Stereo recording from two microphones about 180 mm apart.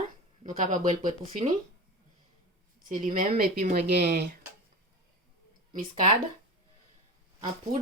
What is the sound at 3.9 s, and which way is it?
Speech, 65° right (ahead or behind).